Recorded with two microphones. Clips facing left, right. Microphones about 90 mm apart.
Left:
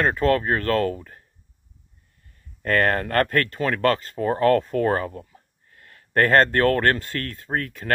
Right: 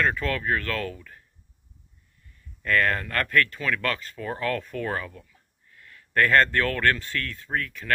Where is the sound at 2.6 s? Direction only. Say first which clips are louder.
Left 3 dB; 45° left (ahead or behind).